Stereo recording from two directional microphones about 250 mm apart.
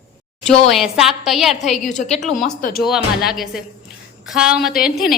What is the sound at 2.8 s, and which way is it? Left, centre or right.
A woman's voice, centre.